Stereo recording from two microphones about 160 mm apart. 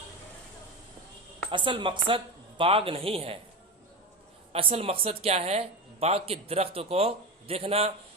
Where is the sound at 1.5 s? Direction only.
30° right (ahead or behind).